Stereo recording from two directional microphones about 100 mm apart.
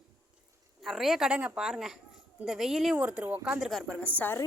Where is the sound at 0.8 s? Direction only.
Centre (ahead or behind).